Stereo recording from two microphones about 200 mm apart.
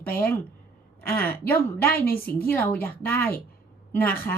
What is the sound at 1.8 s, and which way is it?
Speech, 50° left (ahead or behind).